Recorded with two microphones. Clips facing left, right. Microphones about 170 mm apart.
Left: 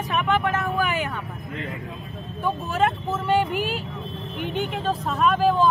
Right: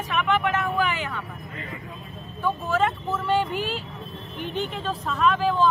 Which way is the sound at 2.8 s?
45° left (ahead or behind).